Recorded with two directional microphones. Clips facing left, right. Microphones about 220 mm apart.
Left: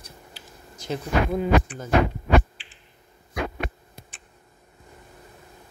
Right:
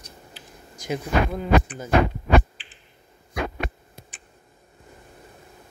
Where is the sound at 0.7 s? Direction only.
10° right (ahead or behind).